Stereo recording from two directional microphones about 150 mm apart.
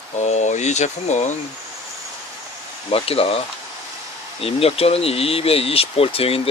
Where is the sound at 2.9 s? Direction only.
40° left (ahead or behind).